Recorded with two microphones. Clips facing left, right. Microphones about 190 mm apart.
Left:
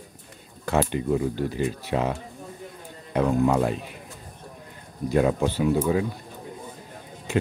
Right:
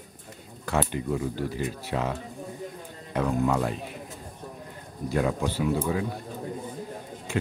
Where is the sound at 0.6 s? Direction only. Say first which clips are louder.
Left 4 dB; 20° left (ahead or behind).